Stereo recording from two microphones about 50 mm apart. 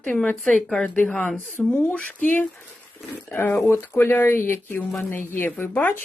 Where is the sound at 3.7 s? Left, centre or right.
Left.